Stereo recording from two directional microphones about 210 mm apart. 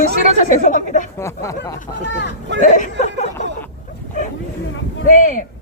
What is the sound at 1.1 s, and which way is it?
Speech, 15° left (ahead or behind).